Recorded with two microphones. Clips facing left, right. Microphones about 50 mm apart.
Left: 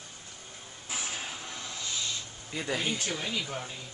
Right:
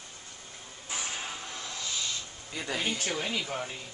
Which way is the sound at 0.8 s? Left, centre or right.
Centre.